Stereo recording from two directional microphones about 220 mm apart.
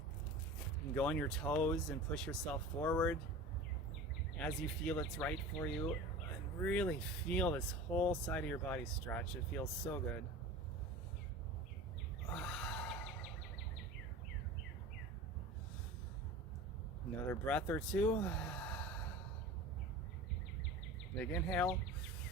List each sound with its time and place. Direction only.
0.9 s speech: 5° left (ahead or behind)
4.4 s speech: 5° left (ahead or behind)
7.9 s speech: 15° left (ahead or behind)
8.3 s speech: 5° left (ahead or behind)
12.3 s neigh: 5° left (ahead or behind)
17.2 s speech: 10° left (ahead or behind)
21.2 s speech: 5° left (ahead or behind)